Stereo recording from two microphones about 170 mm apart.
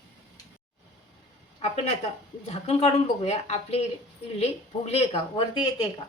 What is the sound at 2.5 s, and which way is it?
Speech, 40° left (ahead or behind).